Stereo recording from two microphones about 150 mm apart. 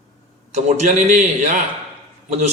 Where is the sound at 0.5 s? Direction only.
50° right (ahead or behind).